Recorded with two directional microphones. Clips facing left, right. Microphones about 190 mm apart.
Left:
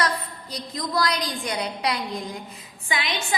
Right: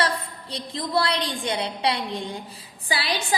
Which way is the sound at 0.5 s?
30° right (ahead or behind).